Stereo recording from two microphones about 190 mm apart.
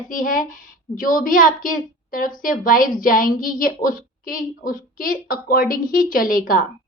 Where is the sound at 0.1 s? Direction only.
45° left (ahead or behind).